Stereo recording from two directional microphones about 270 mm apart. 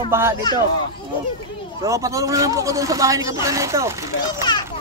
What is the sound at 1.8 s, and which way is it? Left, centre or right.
Speech, centre.